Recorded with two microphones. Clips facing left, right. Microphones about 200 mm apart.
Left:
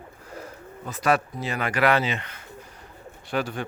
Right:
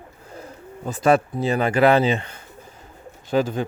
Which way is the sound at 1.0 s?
25° right (ahead or behind).